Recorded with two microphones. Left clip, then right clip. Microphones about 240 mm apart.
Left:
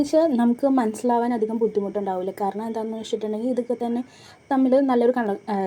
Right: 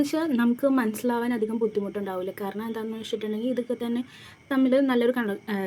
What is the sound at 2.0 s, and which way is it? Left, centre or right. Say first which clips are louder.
A woman's voice: left 6 dB; right.